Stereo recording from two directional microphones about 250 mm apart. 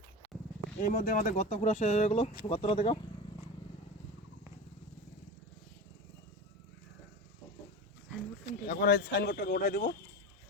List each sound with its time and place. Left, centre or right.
0.8 s speech: left
8.4 s speech: left